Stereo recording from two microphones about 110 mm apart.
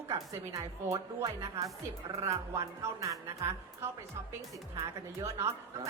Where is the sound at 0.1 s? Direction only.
30° right (ahead or behind).